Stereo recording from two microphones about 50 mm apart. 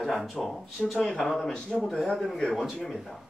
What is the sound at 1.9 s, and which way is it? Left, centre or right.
Speech, centre.